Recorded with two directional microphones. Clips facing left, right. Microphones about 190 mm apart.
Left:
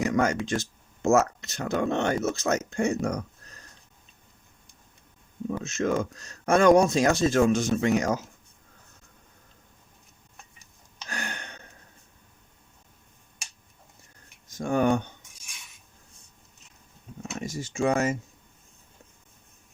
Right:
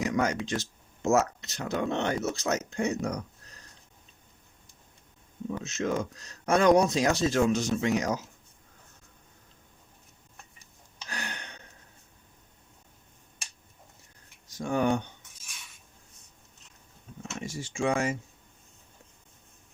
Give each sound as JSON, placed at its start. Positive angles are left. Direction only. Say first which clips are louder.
{"t": 0.0, "sound": "a sound", "louder": "left 3 dB", "side_deg": 50}
{"t": 0.4, "sound": "speech", "louder": "left 3 dB", "side_deg": 50}
{"t": 5.5, "sound": "speech", "louder": "left 3 dB", "side_deg": 50}
{"t": 11.1, "sound": "a sound", "louder": "left 3 dB", "side_deg": 50}
{"t": 14.5, "sound": "speech", "louder": "left 3 dB", "side_deg": 50}
{"t": 17.4, "sound": "speech", "louder": "left 3 dB", "side_deg": 40}